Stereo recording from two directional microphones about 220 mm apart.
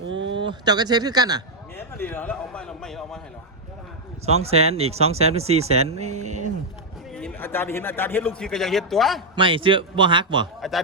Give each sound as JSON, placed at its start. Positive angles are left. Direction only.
{"t": 0.1, "sound": "a sound", "side_deg": -55}
{"t": 0.4, "sound": "speech", "side_deg": -20}
{"t": 2.0, "sound": "a man's voice", "side_deg": 10}
{"t": 4.4, "sound": "speech", "side_deg": -30}
{"t": 7.2, "sound": "a man's voice", "side_deg": 5}
{"t": 9.3, "sound": "speech", "side_deg": -25}
{"t": 10.6, "sound": "a man's voice", "side_deg": 0}